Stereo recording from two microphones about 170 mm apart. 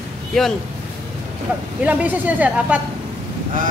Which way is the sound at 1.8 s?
10° right (ahead or behind).